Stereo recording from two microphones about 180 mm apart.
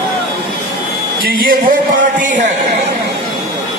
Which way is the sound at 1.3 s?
55° right (ahead or behind).